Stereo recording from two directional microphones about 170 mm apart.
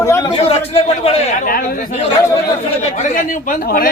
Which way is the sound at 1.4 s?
55° left (ahead or behind).